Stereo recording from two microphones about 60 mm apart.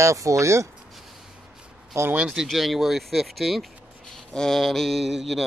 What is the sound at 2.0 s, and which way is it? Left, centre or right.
Speech, right.